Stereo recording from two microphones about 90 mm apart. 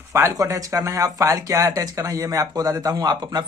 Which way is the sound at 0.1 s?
35° right (ahead or behind).